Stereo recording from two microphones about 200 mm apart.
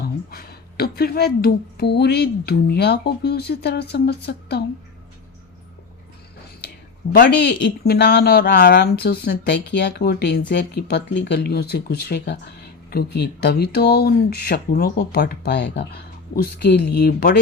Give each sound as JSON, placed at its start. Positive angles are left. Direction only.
{"t": 0.3, "sound": "speech", "side_deg": 50}
{"t": 7.1, "sound": "speech", "side_deg": 55}